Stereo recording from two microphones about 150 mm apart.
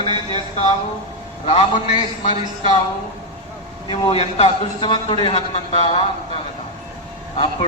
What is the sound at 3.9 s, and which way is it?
A man's voice, 35° left (ahead or behind).